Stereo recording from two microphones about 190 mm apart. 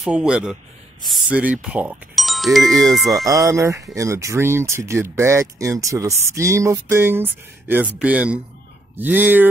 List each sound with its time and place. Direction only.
0.0 s speech: 5° right (ahead or behind)
3.3 s speech: 15° right (ahead or behind)